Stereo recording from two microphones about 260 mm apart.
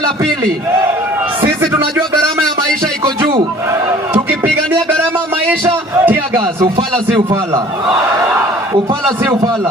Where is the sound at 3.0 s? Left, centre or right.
Centre.